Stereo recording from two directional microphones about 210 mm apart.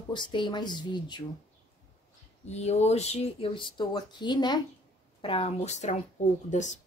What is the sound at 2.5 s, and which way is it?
A woman's voice, 30° left (ahead or behind).